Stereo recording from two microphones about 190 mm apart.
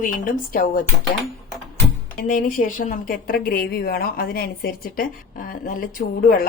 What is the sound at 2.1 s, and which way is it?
A woman's voice, 45° left (ahead or behind).